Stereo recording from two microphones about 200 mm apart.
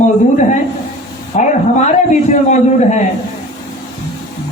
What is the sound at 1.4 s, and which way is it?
A man's voice, 35° left (ahead or behind).